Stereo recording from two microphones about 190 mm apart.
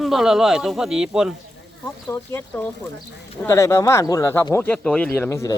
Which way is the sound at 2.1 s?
10° left (ahead or behind).